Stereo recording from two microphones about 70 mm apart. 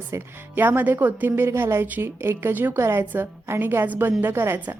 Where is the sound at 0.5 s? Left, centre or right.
Right.